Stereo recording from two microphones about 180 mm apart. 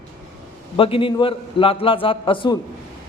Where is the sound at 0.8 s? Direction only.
30° left (ahead or behind).